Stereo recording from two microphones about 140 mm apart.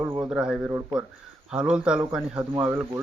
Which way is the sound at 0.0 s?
20° right (ahead or behind).